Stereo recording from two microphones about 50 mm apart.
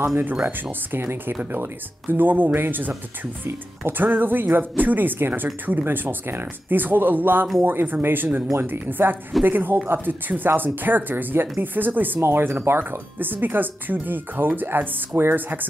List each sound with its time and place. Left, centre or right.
0.1 s speech: right
12.2 s speech: right
13.2 s speech: right